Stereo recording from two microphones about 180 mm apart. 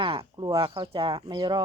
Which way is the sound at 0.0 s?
30° right (ahead or behind).